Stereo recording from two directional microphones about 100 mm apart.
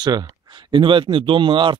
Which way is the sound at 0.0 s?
45° right (ahead or behind).